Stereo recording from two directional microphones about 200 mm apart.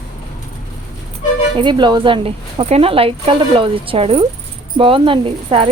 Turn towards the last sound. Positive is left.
turn(degrees=-25)  # may be behind; listen again after turning